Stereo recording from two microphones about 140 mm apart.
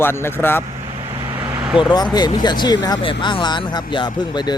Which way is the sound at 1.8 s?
30° left (ahead or behind).